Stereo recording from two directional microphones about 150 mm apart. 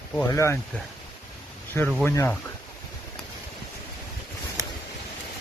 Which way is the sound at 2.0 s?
15° left (ahead or behind).